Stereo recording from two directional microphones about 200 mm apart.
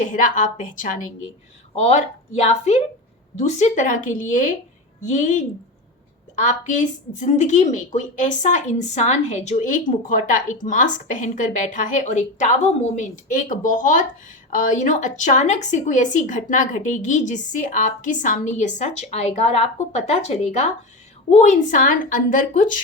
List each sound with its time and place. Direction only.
0.0 s a woman's voice: 40° left (ahead or behind)